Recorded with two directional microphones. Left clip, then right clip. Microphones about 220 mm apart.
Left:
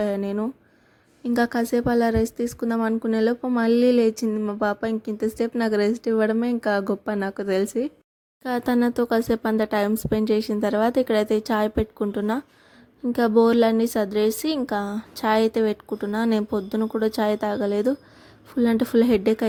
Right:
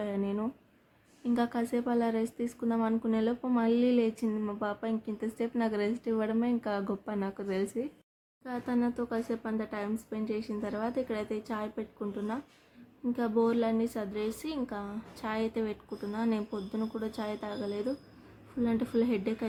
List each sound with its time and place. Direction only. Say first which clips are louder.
0.0 s a woman's voice: left 9 dB; 30° left (ahead or behind)
8.4 s a woman's voice: left 11 dB; 40° left (ahead or behind)